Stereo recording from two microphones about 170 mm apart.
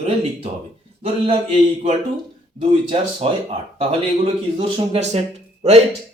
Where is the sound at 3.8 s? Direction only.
35° right (ahead or behind).